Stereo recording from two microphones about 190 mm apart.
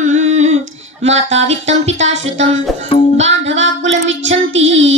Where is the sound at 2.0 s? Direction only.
85° right.